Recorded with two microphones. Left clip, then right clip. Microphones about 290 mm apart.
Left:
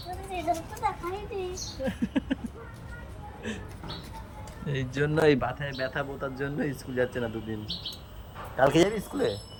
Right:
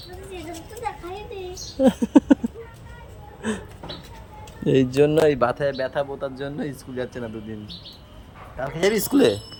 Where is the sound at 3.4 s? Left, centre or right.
Centre.